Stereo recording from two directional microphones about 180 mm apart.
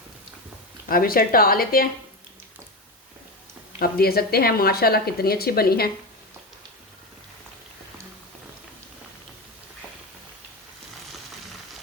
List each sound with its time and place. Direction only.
0.9 s speech: 55° left (ahead or behind)
3.8 s speech: 60° left (ahead or behind)